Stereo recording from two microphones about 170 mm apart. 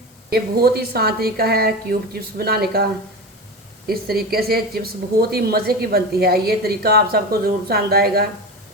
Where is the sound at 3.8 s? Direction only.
65° right (ahead or behind).